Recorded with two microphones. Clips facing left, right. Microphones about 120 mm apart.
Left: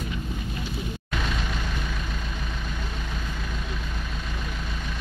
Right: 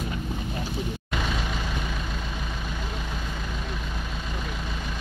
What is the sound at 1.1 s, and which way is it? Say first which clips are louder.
Vehicle: right 1 dB; 5° right (ahead or behind).